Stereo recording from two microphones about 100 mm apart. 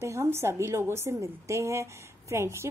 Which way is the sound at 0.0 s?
25° right (ahead or behind).